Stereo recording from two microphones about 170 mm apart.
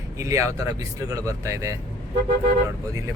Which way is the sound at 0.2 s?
20° right (ahead or behind).